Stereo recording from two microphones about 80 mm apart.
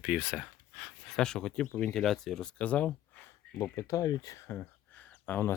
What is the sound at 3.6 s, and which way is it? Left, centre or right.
Speech, left.